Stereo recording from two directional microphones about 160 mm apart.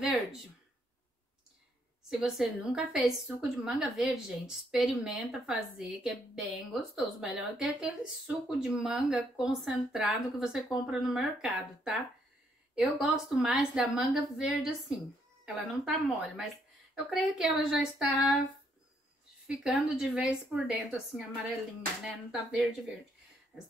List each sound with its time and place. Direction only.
2.0 s a woman's voice: 5° right (ahead or behind)
19.4 s a woman's voice: 5° right (ahead or behind)
22.0 s a woman's voice: 5° right (ahead or behind)